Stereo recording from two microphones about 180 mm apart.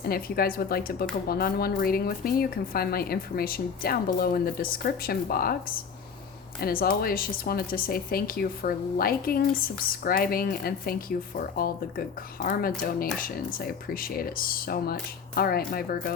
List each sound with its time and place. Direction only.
0.0 s speech: 55° left (ahead or behind)